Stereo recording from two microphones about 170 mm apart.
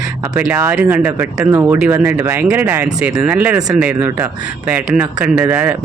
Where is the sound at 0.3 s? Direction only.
10° right (ahead or behind).